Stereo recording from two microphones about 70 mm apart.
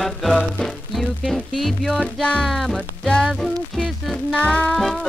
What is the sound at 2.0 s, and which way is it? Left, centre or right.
Music, centre.